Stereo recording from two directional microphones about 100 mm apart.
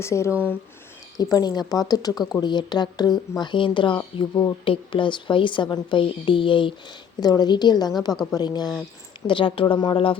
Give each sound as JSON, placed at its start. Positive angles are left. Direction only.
{"t": 0.0, "sound": "speech", "side_deg": 30}
{"t": 1.1, "sound": "speech", "side_deg": 40}
{"t": 4.1, "sound": "a woman's voice", "side_deg": 65}
{"t": 5.6, "sound": "speech", "side_deg": 45}
{"t": 6.0, "sound": "a woman's voice", "side_deg": 55}
{"t": 7.2, "sound": "speech", "side_deg": 45}
{"t": 8.1, "sound": "speech", "side_deg": 5}
{"t": 8.4, "sound": "speech", "side_deg": 45}
{"t": 9.2, "sound": "a woman's voice", "side_deg": 60}